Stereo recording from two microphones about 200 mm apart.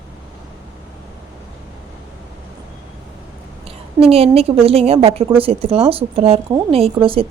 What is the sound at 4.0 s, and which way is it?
A woman's voice, 30° right (ahead or behind).